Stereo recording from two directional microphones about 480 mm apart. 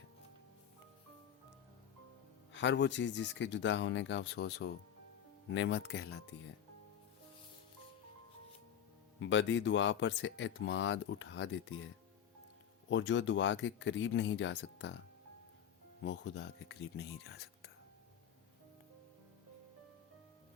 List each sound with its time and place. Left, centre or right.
2.5 s speech: left
9.2 s speech: left
12.9 s speech: left
16.0 s speech: left